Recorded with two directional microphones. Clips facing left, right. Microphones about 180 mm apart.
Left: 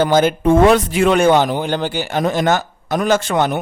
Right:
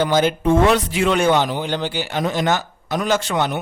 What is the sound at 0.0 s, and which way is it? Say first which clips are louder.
Speech: left 3 dB; 50° left (ahead or behind).